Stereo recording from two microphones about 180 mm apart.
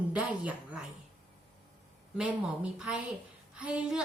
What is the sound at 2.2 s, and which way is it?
A woman's voice, 5° right (ahead or behind).